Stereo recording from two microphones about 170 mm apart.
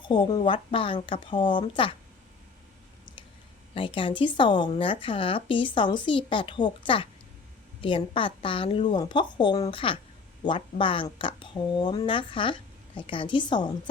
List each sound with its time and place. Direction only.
0.1 s a woman's voice: 25° left (ahead or behind)
3.8 s a woman's voice: 30° left (ahead or behind)